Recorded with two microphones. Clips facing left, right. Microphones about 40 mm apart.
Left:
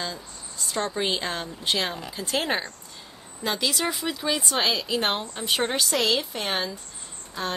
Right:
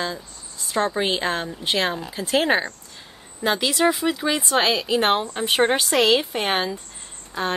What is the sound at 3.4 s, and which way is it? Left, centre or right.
Speech, right.